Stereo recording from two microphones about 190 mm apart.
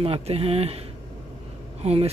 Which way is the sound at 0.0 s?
30° right (ahead or behind).